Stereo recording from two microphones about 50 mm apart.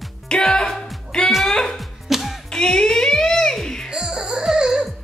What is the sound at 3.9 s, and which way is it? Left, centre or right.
Music, centre.